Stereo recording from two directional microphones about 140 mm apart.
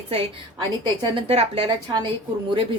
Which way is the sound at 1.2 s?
40° right (ahead or behind).